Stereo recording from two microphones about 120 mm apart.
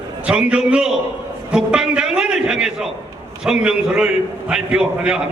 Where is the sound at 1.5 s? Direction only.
10° right (ahead or behind).